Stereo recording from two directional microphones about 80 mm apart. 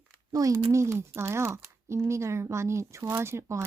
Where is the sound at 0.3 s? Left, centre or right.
Right.